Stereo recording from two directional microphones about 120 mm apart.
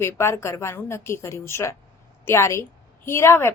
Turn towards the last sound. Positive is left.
turn(degrees=20)  # may be behind; listen again after turning